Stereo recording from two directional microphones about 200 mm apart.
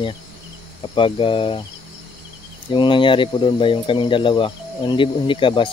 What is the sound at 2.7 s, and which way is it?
Speech, 25° left (ahead or behind).